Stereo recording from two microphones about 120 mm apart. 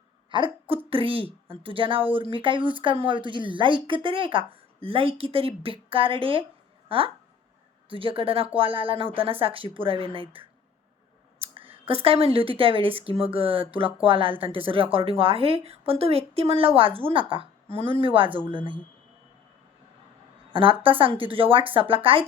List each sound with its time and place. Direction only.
0.3 s hiccup: 45° right (ahead or behind)
0.9 s speech: 50° right (ahead or behind)
20.5 s speech: 45° right (ahead or behind)